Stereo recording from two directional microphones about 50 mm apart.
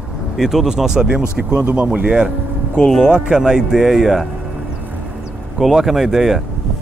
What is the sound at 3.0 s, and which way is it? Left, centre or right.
Speech, centre.